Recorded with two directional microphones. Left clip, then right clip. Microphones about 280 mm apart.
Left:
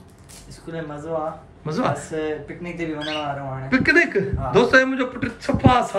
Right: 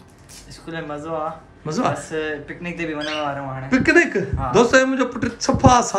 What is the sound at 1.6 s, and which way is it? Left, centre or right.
A man's voice, centre.